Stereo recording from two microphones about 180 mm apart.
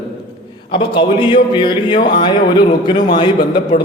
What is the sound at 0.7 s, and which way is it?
A man's voice, 30° left (ahead or behind).